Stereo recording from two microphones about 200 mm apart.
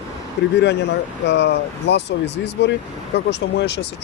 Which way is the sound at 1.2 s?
60° left (ahead or behind).